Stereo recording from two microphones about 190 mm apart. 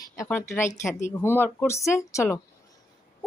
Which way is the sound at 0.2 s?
10° left (ahead or behind).